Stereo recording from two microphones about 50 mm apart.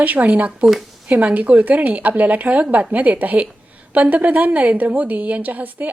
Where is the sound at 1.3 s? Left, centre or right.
Right.